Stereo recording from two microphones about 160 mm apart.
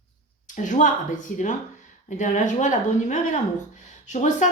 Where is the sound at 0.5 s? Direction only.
50° left (ahead or behind).